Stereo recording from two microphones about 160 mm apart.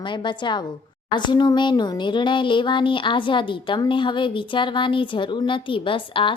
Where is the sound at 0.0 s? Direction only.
30° left (ahead or behind).